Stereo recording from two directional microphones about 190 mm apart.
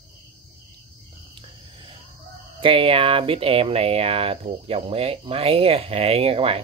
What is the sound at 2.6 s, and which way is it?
Speech, 30° right (ahead or behind).